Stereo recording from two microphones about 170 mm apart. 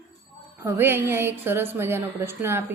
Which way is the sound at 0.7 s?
15° right (ahead or behind).